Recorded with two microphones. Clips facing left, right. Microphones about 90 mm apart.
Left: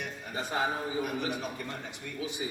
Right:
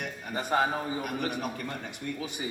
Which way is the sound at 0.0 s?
55° right (ahead or behind).